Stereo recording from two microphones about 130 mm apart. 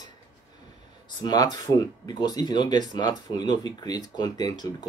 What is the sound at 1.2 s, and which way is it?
Speech, 30° left (ahead or behind).